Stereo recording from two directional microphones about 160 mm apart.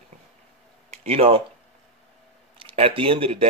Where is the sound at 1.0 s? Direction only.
35° right (ahead or behind).